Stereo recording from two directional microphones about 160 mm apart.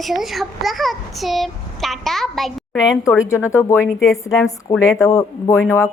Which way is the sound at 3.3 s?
20° left (ahead or behind).